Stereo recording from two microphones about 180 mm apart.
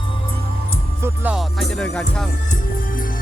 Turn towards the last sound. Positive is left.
turn(degrees=50)  # may be behind; listen again after turning